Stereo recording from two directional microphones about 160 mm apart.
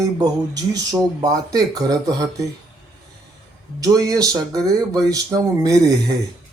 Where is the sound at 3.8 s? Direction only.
25° right (ahead or behind).